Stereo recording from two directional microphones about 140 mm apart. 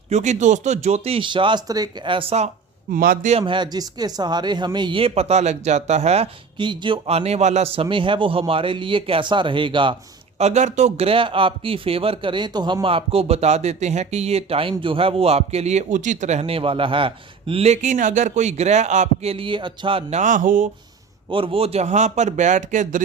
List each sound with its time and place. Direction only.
0.1 s speech: 55° right (ahead or behind); by 2.2 s 30° right (ahead or behind)
2.9 s a man's voice: 90° right
3.4 s a man's voice: 35° right (ahead or behind); by 6.2 s 50° right (ahead or behind)
6.6 s a man's voice: 35° right (ahead or behind)
10.3 s speech: 55° right (ahead or behind); by 20.7 s 70° right (ahead or behind)
21.2 s a man's voice: 40° right (ahead or behind); by 23.0 s 65° right (ahead or behind)